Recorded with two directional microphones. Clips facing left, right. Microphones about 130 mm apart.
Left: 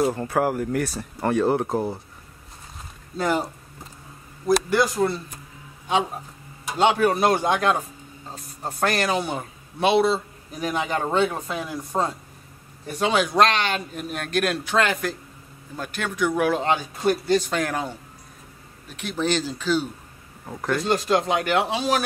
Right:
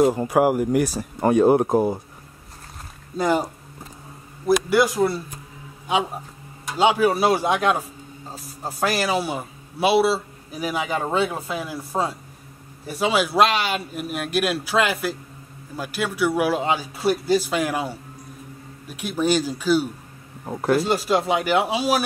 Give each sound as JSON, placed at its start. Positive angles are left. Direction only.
{"t": 0.0, "sound": "a man's voice", "side_deg": -15}
{"t": 3.2, "sound": "a man's voice", "side_deg": -15}
{"t": 6.7, "sound": "a man's voice", "side_deg": -5}
{"t": 20.4, "sound": "speech", "side_deg": -30}
{"t": 20.8, "sound": "a man's voice", "side_deg": -5}